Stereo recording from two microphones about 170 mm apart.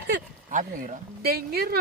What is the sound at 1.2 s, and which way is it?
Speech, 65° right (ahead or behind).